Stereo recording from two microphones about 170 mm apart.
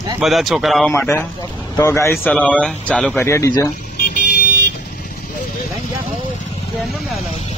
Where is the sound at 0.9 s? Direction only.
15° left (ahead or behind).